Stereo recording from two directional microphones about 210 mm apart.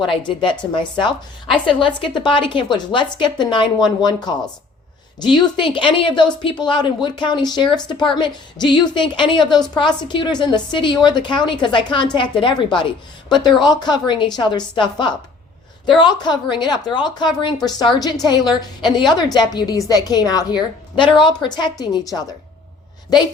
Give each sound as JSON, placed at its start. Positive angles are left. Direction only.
{"t": 0.1, "sound": "a woman's voice", "side_deg": 20}